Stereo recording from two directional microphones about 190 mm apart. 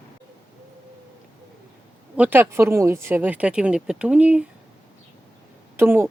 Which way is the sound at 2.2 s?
10° right (ahead or behind).